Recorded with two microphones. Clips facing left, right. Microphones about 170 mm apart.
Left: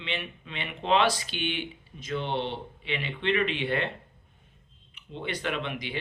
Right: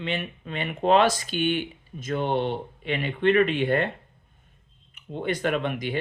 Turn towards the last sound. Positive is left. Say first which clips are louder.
# right 6 dB
turn(degrees=-45)  # may be behind; listen again after turning